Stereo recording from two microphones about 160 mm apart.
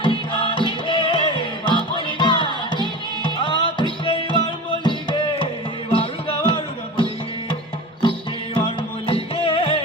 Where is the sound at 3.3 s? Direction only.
30° left (ahead or behind).